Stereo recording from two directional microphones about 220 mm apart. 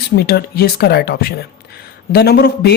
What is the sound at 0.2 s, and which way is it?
Speech, 45° left (ahead or behind).